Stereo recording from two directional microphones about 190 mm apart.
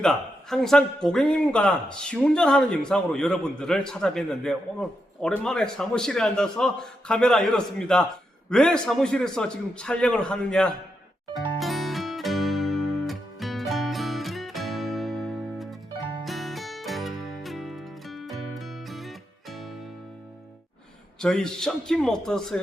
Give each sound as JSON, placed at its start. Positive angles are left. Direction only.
{"t": 0.0, "sound": "a man's voice", "side_deg": 5}
{"t": 11.3, "sound": "music", "side_deg": 0}
{"t": 21.2, "sound": "a man's voice", "side_deg": 5}